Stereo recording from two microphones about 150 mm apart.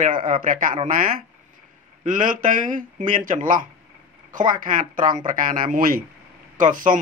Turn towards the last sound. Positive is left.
turn(degrees=-65)  # may be behind; listen again after turning